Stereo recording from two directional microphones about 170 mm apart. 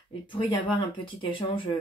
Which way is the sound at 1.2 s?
30° left (ahead or behind).